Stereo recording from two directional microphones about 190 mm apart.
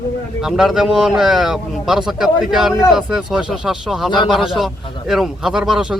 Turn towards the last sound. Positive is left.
turn(degrees=-5)  # may be behind; listen again after turning